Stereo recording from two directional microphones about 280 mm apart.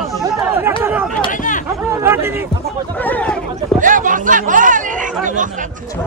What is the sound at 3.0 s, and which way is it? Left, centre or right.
Speech, centre.